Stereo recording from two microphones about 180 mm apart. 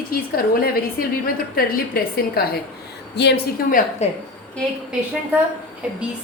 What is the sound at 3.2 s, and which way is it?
Speech, 70° left (ahead or behind).